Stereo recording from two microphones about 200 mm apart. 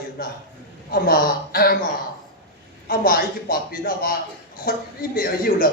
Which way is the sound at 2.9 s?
45° left (ahead or behind).